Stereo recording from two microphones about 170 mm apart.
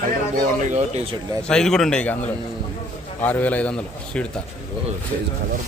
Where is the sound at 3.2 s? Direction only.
10° left (ahead or behind).